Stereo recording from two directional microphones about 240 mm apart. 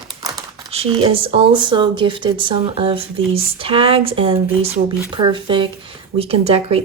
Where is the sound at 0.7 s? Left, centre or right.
Right.